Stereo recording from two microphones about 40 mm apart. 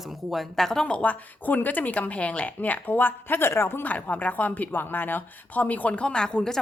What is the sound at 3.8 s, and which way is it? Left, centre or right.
Speech, left.